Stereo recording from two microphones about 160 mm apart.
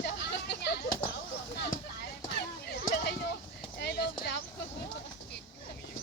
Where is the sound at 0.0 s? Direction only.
90° left.